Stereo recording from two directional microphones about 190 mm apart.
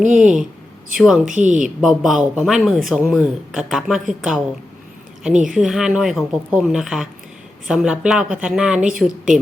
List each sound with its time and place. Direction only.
0.1 s speech: 5° right (ahead or behind)
1.2 s a woman's voice: 40° right (ahead or behind)
1.6 s speech: 5° right (ahead or behind)
5.5 s speech: centre (ahead or behind)